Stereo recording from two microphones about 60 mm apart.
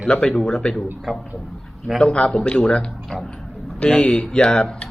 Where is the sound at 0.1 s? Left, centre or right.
Centre.